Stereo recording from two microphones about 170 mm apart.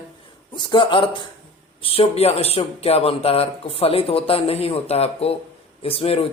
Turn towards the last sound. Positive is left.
turn(degrees=35)  # may be behind; listen again after turning